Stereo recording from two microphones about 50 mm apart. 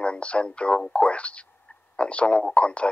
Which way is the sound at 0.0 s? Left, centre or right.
Left.